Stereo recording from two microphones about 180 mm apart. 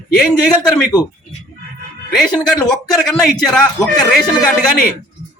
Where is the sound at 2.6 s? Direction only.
5° left (ahead or behind).